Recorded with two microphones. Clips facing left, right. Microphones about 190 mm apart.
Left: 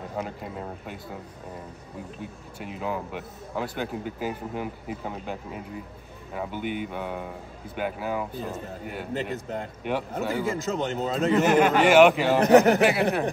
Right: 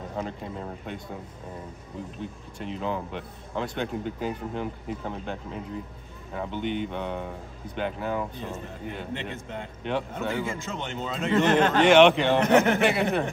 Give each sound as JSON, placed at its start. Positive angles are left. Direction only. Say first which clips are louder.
{"t": 0.2, "sound": "a man's voice", "louder": "right 1 dB", "side_deg": 5}
{"t": 2.6, "sound": "a man's voice", "louder": "right 1 dB", "side_deg": 5}
{"t": 9.1, "sound": "a man's voice", "louder": "left 4 dB", "side_deg": 40}
{"t": 11.3, "sound": "a man's voice", "louder": "even", "side_deg": 5}
{"t": 12.5, "sound": "a man's voice", "louder": "left 6 dB", "side_deg": 40}
{"t": 12.8, "sound": "a man's voice", "louder": "left 2 dB", "side_deg": 5}